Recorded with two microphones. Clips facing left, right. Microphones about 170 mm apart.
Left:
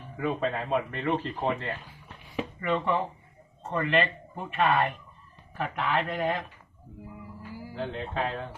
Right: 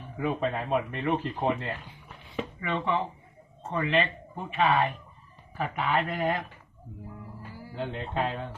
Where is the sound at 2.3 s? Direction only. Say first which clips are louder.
Left 3 dB; 5° left (ahead or behind).